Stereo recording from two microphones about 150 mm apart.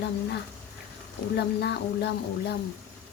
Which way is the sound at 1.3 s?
90° left.